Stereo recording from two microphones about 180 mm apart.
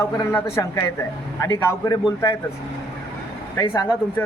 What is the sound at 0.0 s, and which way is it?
A man's voice, 15° left (ahead or behind).